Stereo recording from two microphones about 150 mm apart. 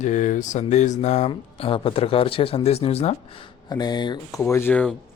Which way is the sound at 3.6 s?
25° left (ahead or behind).